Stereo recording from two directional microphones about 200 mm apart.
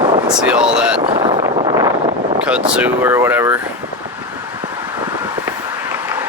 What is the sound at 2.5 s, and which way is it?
Speech, 5° right (ahead or behind).